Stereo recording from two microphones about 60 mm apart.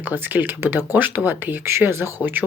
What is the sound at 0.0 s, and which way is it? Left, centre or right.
Speech, right.